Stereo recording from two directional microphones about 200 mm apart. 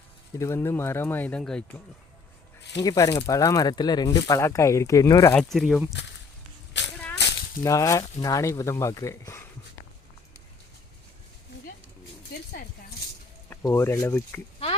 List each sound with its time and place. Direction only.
0.3 s speech: 15° left (ahead or behind)
2.8 s speech: 15° left (ahead or behind)
5.3 s speech: 5° left (ahead or behind)
6.8 s a sound: 60° left (ahead or behind)
7.6 s speech: 15° left (ahead or behind)
13.5 s speech: 15° left (ahead or behind)